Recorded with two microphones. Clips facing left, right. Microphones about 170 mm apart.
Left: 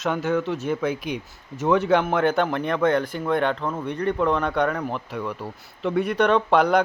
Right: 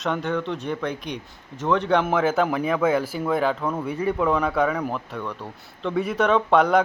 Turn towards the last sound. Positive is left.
turn(degrees=0)  # may be behind; listen again after turning